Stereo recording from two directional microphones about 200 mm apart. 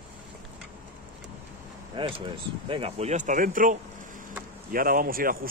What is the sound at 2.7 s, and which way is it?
Speech, 30° right (ahead or behind).